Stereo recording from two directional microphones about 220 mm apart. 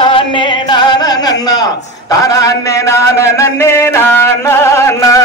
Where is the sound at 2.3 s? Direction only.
15° left (ahead or behind).